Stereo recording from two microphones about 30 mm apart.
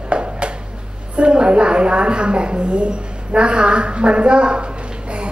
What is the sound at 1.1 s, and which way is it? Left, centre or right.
A woman's voice, right.